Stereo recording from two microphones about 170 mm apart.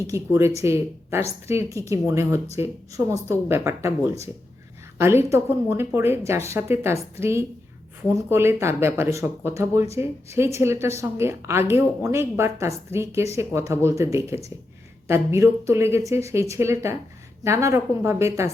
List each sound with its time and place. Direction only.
0.1 s a woman's voice: 15° right (ahead or behind)